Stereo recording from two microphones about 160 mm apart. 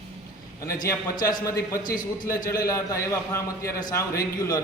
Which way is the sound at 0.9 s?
20° left (ahead or behind).